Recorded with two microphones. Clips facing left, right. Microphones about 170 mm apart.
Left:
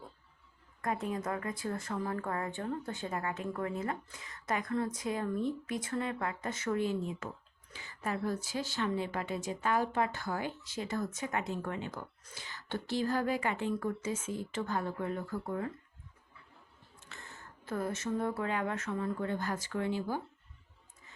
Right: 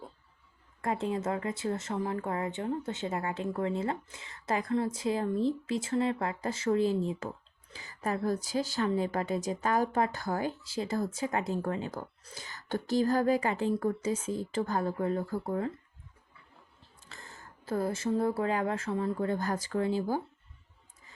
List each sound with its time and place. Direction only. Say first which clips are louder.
0.8 s a woman's voice: right 3 dB; 30° right (ahead or behind)
17.1 s speech: right 1 dB; 35° right (ahead or behind)